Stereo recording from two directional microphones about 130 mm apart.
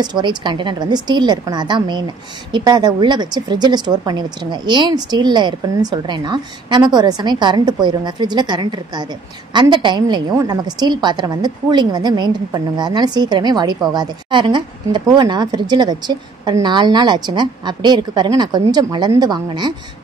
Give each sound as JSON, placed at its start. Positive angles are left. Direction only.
{"t": 0.0, "sound": "a woman's voice", "side_deg": -35}